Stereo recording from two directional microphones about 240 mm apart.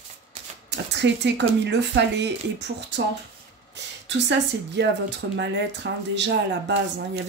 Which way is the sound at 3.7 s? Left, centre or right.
Right.